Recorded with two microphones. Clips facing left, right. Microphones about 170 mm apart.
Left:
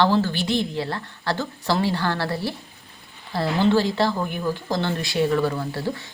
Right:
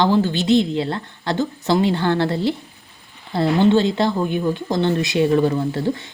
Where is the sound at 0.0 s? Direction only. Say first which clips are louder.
Right 3 dB; 15° right (ahead or behind).